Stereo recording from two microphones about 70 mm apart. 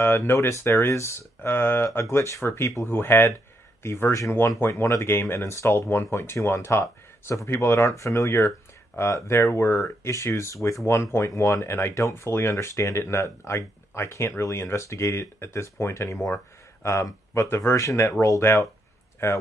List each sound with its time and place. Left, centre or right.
0.0 s speech: left
4.3 s speech: left